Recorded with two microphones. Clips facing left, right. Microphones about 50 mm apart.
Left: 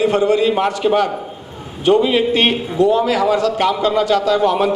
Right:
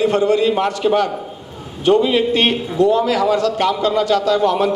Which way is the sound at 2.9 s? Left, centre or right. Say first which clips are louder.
Left 1 dB; left.